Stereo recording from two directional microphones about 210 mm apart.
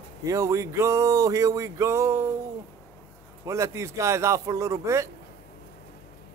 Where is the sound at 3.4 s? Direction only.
15° right (ahead or behind).